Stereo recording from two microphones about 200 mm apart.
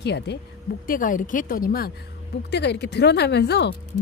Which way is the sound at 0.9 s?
40° left (ahead or behind).